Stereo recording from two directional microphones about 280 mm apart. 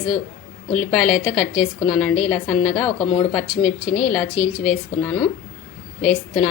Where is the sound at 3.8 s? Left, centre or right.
Left.